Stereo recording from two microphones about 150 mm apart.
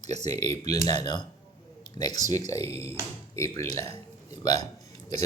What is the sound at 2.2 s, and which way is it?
Speech, 50° right (ahead or behind).